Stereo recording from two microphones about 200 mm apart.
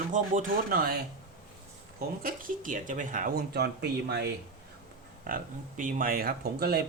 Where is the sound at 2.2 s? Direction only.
40° right (ahead or behind).